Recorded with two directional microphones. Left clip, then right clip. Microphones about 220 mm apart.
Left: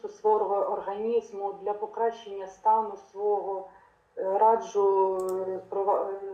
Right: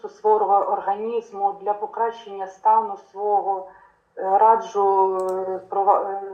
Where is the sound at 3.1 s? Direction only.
20° right (ahead or behind).